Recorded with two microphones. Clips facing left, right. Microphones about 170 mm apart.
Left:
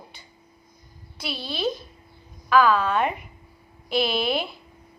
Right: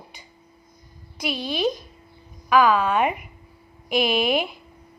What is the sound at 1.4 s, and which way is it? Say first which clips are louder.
Speech: right 3 dB; 15° right (ahead or behind).